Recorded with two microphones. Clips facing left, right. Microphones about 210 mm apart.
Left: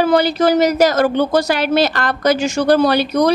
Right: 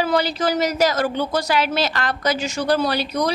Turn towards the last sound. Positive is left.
turn(degrees=60)  # may be behind; listen again after turning